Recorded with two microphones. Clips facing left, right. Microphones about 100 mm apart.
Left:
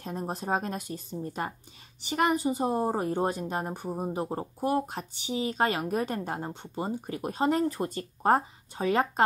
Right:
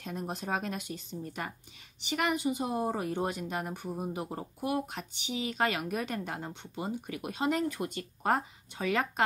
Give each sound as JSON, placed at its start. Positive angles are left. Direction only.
{"t": 0.0, "sound": "speech", "side_deg": 35}